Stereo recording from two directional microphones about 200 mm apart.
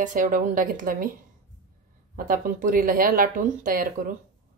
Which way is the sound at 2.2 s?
45° right (ahead or behind).